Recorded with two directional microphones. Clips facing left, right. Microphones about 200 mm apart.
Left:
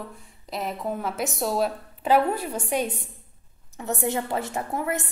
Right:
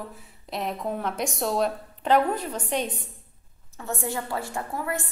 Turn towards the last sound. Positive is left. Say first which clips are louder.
# left 3 dB
turn(degrees=20)  # may be behind; listen again after turning